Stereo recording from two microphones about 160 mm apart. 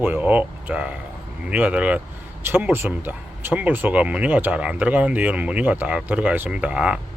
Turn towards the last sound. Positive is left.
turn(degrees=-5)  # may be behind; listen again after turning